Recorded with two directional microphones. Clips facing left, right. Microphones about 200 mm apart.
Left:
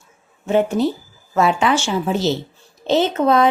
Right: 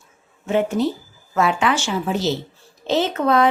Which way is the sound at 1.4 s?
30° left (ahead or behind).